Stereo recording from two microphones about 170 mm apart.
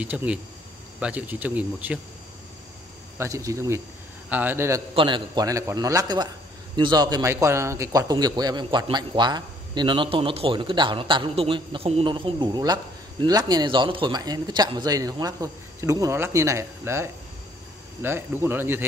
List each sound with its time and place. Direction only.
0.0 s speech: 10° right (ahead or behind)
3.2 s speech: 15° right (ahead or behind)
4.9 s speech: 30° right (ahead or behind); by 18.9 s 10° right (ahead or behind)